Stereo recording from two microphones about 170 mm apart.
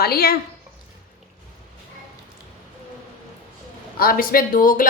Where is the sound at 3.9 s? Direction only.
60° left (ahead or behind).